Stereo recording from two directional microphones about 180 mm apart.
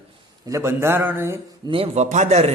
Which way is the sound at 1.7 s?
35° right (ahead or behind).